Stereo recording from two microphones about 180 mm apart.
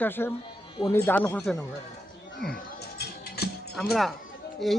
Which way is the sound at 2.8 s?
60° left (ahead or behind).